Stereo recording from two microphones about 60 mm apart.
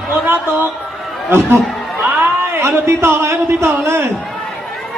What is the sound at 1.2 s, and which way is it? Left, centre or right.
Speech, right.